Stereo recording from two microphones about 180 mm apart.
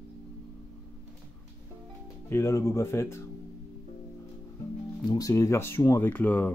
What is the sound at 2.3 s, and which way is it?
Speech, 15° left (ahead or behind).